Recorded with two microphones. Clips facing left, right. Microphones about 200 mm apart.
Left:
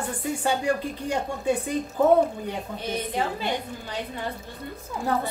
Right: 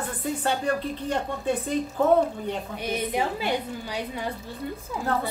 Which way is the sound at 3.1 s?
10° right (ahead or behind).